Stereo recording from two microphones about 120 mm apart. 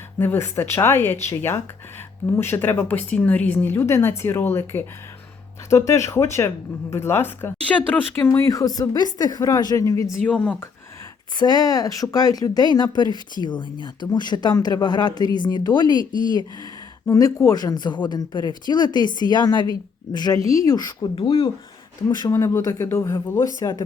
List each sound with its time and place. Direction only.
0.2 s a woman's voice: 20° left (ahead or behind)
10.2 s speech: 10° left (ahead or behind)
11.3 s speech: 35° left (ahead or behind)
17.1 s speech: 30° left (ahead or behind); by 21.5 s 45° left (ahead or behind)
22.3 s a woman's voice: 20° left (ahead or behind)